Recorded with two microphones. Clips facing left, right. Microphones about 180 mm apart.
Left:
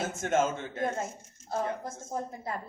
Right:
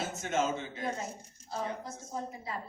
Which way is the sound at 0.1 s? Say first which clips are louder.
Left 4 dB; 50° left (ahead or behind).